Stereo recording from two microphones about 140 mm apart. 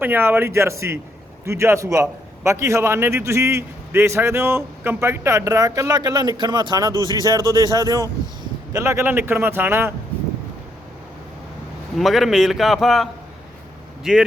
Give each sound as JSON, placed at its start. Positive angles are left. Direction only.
{"t": 0.0, "sound": "a man's voice", "side_deg": -15}
{"t": 11.9, "sound": "a man's voice", "side_deg": 0}